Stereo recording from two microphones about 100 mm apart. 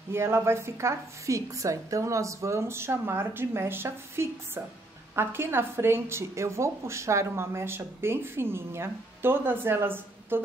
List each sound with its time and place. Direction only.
0.1 s a woman's voice: 25° right (ahead or behind)